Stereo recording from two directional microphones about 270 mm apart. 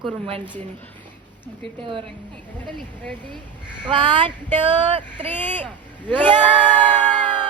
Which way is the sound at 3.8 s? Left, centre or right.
Centre.